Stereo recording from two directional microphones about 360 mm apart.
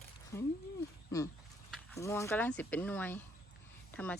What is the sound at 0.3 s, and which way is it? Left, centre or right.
Speech, centre.